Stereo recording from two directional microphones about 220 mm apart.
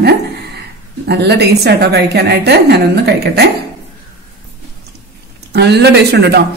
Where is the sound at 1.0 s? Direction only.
50° right (ahead or behind).